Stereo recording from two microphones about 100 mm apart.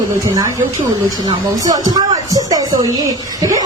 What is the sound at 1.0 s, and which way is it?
A woman's voice, 35° right (ahead or behind).